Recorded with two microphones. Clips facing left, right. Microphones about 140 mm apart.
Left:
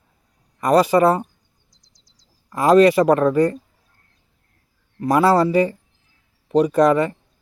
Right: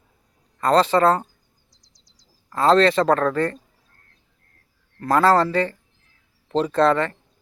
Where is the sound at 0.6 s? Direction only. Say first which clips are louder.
Left 2 dB; 15° left (ahead or behind).